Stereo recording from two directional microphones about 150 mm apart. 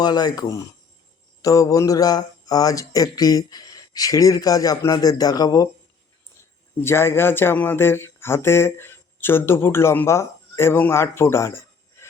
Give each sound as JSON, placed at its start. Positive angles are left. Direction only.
{"t": 0.0, "sound": "speech", "side_deg": 25}